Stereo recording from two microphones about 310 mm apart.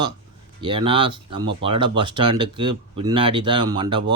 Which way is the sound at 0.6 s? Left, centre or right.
Centre.